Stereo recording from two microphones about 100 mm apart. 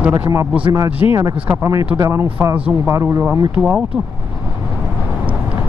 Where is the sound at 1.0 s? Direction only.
25° right (ahead or behind).